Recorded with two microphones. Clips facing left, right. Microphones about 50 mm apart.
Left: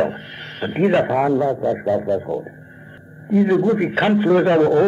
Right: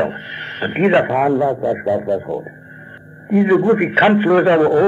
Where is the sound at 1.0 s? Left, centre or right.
Right.